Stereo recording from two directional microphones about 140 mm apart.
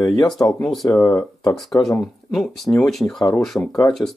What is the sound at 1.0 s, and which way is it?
Speech, 25° left (ahead or behind).